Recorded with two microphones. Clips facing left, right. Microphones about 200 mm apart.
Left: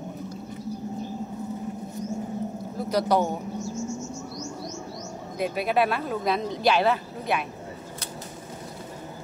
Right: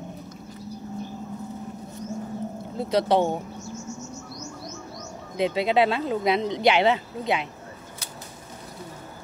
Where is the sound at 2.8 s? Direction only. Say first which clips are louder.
Right 2 dB; 25° right (ahead or behind).